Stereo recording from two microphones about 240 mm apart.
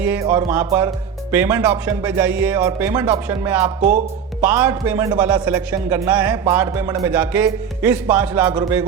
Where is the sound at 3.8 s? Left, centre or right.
Right.